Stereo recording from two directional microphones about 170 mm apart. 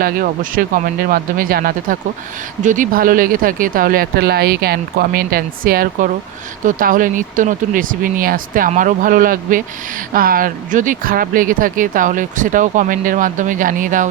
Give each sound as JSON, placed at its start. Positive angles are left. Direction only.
{"t": 0.0, "sound": "speech", "side_deg": -60}